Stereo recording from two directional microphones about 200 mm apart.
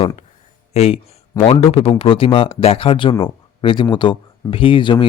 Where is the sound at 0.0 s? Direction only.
25° left (ahead or behind).